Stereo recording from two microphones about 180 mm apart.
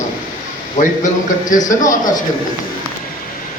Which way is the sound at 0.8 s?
45° left (ahead or behind).